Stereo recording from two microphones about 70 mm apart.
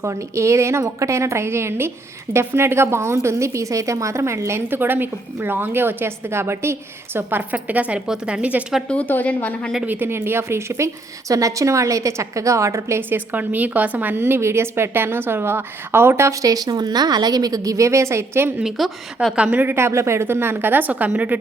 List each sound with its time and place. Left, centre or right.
0.0 s a woman's voice: right; by 8.0 s centre
8.0 s a woman's voice: centre
8.9 s a woman's voice: left
9.8 s a woman's voice: right
13.0 s a woman's voice: right
18.6 s a woman's voice: centre
19.4 s a woman's voice: centre
19.6 s a woman's voice: right